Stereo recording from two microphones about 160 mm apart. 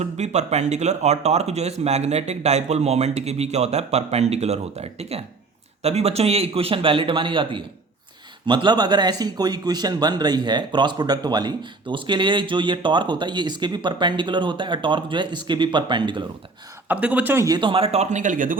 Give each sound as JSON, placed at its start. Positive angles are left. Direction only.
{"t": 0.0, "sound": "a man's voice", "side_deg": -45}
{"t": 16.9, "sound": "a man's voice", "side_deg": -10}